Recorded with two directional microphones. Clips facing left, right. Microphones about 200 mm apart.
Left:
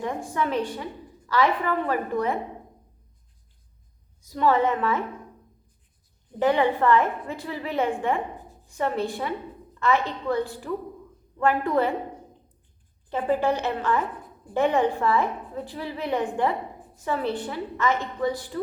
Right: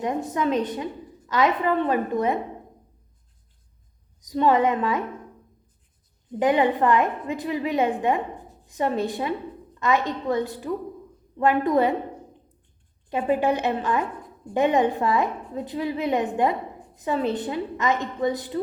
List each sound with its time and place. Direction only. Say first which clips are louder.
0.0 s a woman's voice: right 3 dB; 20° right (ahead or behind)
4.2 s a woman's voice: right 2 dB; 15° right (ahead or behind)
6.4 s a woman's voice: right 1 dB; 15° right (ahead or behind)
13.1 s a woman's voice: right 1 dB; 15° right (ahead or behind)